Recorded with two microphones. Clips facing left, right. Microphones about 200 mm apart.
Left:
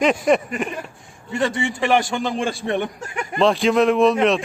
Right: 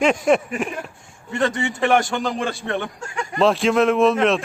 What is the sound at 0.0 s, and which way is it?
Speech, centre (ahead or behind).